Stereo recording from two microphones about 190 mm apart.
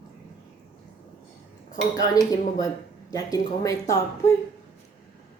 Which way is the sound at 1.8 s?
20° left (ahead or behind).